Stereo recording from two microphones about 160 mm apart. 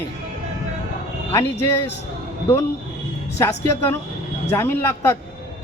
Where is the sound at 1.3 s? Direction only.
15° left (ahead or behind).